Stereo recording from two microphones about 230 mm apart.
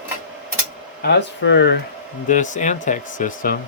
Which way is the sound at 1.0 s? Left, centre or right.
Left.